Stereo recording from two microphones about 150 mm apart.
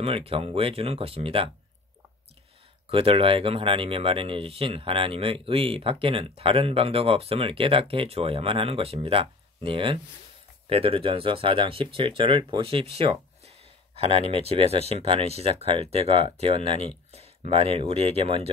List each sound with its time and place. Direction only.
0.0 s speech: 40° right (ahead or behind)
2.9 s speech: 35° right (ahead or behind)